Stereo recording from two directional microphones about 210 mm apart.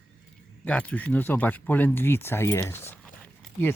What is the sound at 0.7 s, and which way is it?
Speech, 5° left (ahead or behind).